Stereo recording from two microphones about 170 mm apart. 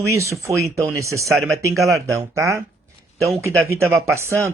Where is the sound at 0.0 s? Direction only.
15° right (ahead or behind).